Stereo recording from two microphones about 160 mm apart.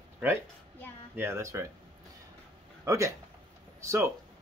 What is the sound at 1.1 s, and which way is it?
Speech, 15° right (ahead or behind).